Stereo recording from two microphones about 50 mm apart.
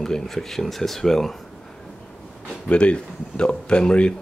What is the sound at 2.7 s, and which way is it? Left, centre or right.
Speech, left.